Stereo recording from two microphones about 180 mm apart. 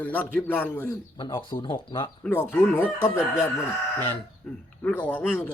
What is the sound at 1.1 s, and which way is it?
Speech, 30° left (ahead or behind).